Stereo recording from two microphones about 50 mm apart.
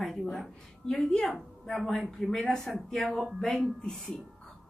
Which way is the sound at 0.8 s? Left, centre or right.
Centre.